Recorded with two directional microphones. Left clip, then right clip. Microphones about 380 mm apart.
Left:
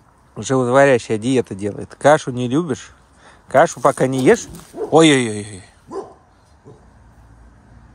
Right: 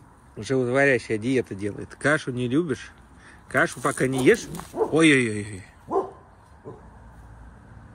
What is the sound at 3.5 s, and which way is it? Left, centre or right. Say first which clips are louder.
Speech: left 10 dB; left.